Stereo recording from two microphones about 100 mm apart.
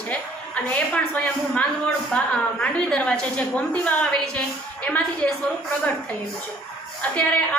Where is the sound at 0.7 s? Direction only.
15° left (ahead or behind).